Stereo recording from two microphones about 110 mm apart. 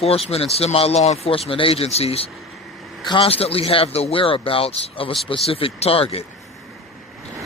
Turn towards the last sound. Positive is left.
turn(degrees=60)  # may be behind; listen again after turning